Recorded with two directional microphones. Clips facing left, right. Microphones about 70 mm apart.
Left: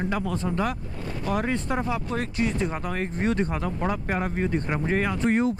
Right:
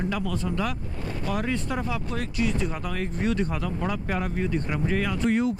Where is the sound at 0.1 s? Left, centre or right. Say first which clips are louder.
Left 1 dB; left.